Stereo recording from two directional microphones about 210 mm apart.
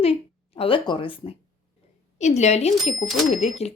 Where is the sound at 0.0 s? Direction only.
25° left (ahead or behind).